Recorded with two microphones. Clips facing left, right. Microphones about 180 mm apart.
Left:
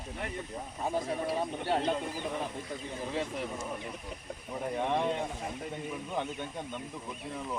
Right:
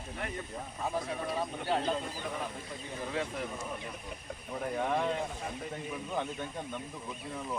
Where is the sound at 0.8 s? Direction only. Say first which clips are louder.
Left 3 dB; 25° left (ahead or behind).